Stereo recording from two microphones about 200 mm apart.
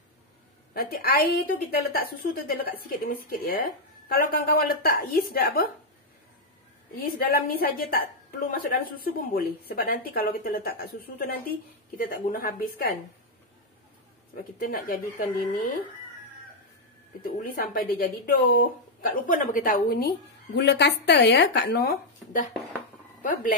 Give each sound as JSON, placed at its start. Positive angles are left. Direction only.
{"t": 0.7, "sound": "speech", "side_deg": 50}
{"t": 7.0, "sound": "speech", "side_deg": 45}
{"t": 14.3, "sound": "speech", "side_deg": 45}
{"t": 17.2, "sound": "speech", "side_deg": 45}